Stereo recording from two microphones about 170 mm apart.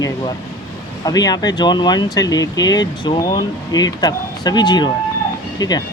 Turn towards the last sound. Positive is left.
turn(degrees=20)  # may be behind; listen again after turning